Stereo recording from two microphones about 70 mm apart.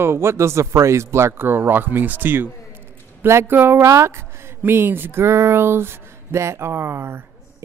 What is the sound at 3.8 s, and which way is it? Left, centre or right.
Speech, right.